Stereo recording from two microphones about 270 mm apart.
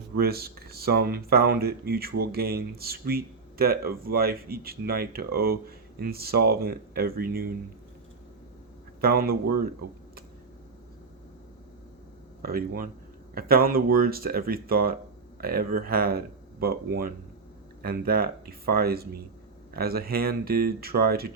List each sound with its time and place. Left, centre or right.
0.2 s speech: right
9.0 s speech: right
12.4 s speech: right